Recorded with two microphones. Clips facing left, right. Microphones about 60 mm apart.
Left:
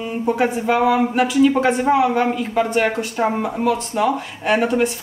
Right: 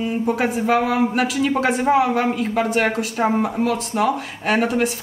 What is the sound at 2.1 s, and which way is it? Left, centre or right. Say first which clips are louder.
Speech: left 1 dB; centre.